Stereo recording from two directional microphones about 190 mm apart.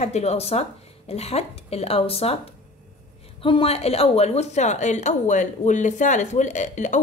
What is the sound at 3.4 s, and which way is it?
A woman's voice, 30° left (ahead or behind).